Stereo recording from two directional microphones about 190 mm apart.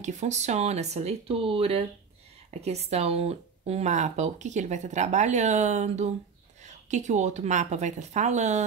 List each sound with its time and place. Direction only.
0.0 s speech: 40° right (ahead or behind)